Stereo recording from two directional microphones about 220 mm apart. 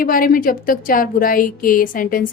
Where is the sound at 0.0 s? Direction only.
40° left (ahead or behind).